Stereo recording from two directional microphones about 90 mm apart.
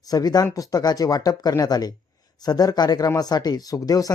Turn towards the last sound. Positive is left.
turn(degrees=40)  # may be behind; listen again after turning